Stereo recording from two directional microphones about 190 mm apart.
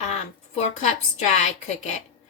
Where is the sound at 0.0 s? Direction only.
35° left (ahead or behind).